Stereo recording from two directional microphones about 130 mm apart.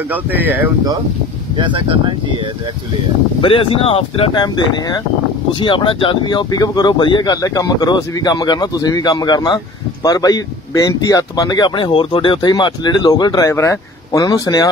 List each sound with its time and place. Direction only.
0.1 s speech: 15° right (ahead or behind)
1.6 s speech: 40° right (ahead or behind)
3.3 s speech: 45° left (ahead or behind)